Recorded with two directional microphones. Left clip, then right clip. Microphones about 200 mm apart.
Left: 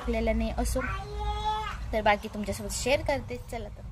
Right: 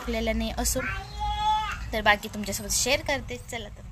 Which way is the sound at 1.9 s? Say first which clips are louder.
Right 2 dB; centre (ahead or behind).